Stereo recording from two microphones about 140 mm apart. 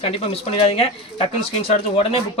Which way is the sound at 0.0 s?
40° left (ahead or behind).